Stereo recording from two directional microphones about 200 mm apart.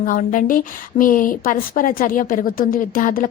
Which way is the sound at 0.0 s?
45° left (ahead or behind).